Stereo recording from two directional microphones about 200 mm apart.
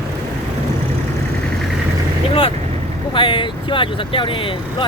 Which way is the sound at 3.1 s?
25° left (ahead or behind).